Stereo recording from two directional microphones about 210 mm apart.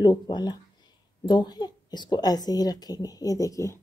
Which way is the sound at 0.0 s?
20° left (ahead or behind).